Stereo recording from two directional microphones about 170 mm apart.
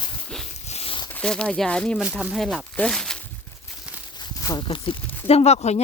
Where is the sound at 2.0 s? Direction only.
5° right (ahead or behind).